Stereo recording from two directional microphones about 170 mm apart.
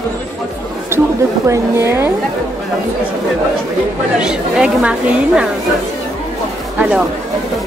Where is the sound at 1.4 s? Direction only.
15° right (ahead or behind).